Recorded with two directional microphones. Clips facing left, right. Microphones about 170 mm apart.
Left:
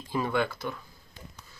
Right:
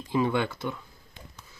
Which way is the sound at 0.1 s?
20° right (ahead or behind).